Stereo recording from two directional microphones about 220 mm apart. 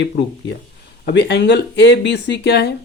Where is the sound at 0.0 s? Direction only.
50° left (ahead or behind).